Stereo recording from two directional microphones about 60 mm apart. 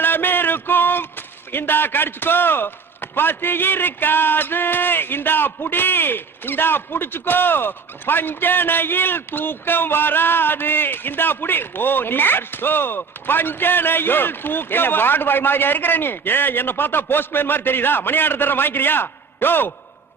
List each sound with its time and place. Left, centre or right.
0.0 s a man's voice: left